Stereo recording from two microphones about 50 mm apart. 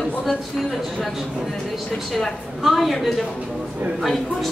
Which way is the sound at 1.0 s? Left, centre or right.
Centre.